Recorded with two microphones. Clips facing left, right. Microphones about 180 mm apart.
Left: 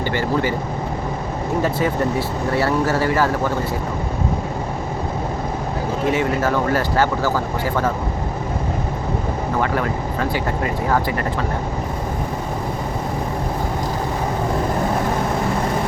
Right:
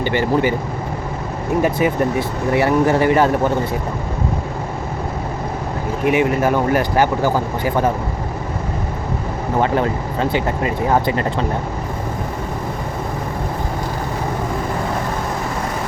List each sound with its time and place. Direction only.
0.0 s speech: 20° right (ahead or behind)
1.6 s speech: 15° right (ahead or behind)
6.1 s speech: 15° right (ahead or behind)
9.6 s speech: 25° right (ahead or behind)